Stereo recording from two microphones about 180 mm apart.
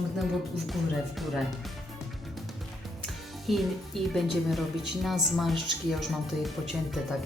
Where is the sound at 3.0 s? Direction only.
Centre (ahead or behind).